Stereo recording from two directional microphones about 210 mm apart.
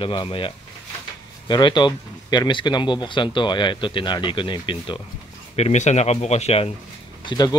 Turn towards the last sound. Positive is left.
turn(degrees=20)  # may be behind; listen again after turning